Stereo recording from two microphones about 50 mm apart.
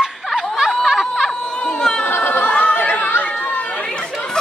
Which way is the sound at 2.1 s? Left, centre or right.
Left.